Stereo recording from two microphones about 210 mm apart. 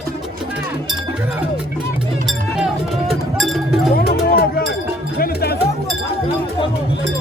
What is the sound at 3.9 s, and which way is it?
Music, 45° left (ahead or behind).